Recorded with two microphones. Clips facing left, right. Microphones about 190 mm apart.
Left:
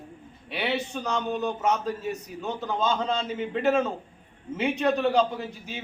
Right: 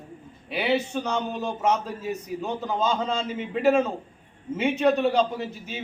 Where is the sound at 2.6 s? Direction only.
10° right (ahead or behind).